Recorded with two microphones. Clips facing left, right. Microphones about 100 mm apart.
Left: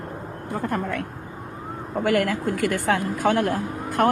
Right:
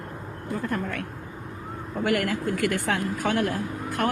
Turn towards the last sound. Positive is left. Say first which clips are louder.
# left 5 dB
turn(degrees=40)  # may be behind; listen again after turning